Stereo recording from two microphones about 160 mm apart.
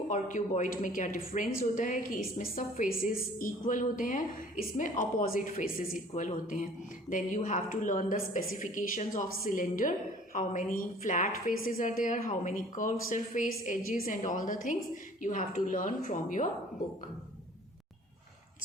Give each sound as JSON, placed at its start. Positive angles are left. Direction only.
{"t": 0.1, "sound": "a woman's voice", "side_deg": 50}